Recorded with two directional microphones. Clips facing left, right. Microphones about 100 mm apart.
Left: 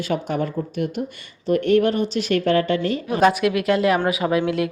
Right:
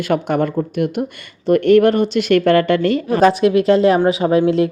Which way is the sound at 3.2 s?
30° right (ahead or behind).